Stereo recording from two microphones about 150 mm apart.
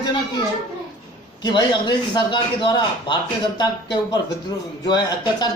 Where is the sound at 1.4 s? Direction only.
30° left (ahead or behind).